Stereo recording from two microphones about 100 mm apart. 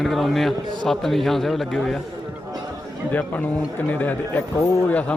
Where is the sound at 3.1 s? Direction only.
15° left (ahead or behind).